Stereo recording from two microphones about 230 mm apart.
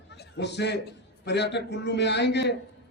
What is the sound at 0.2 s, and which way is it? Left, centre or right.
A man's voice, left.